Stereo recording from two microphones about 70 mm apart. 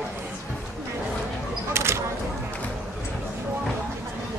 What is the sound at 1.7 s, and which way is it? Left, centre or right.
Single-lens reflex camera, right.